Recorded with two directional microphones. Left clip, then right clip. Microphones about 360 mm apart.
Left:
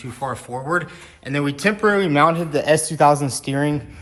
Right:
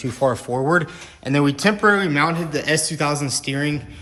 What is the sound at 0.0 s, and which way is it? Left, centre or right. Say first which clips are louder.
Speech: right 7 dB; centre.